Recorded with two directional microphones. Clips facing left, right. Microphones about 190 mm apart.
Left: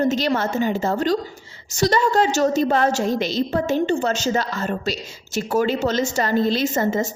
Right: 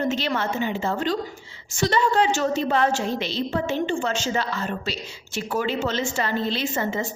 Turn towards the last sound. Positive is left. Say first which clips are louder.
# left 5 dB
turn(degrees=40)  # may be behind; listen again after turning